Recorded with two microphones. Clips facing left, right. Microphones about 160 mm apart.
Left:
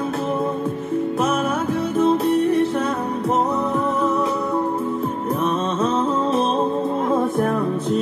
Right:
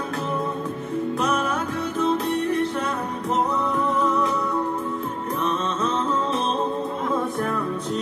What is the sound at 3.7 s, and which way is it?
Music, 30° left (ahead or behind).